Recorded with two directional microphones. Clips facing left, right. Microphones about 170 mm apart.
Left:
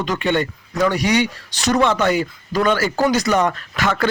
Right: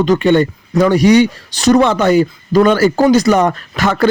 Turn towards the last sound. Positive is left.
turn(degrees=-40)  # may be behind; listen again after turning